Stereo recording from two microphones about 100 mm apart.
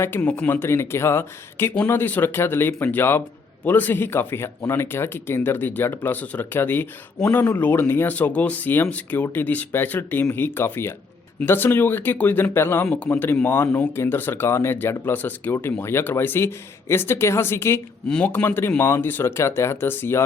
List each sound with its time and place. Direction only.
0.2 s a man's voice: 15° left (ahead or behind)